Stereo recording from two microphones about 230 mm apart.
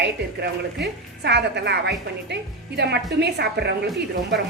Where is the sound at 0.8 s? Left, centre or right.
Right.